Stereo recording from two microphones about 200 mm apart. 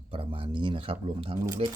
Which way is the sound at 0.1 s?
25° right (ahead or behind).